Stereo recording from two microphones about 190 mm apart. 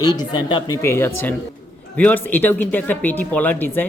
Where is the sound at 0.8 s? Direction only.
15° left (ahead or behind).